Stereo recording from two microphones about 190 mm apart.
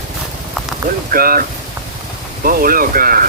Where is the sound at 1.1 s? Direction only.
50° right (ahead or behind).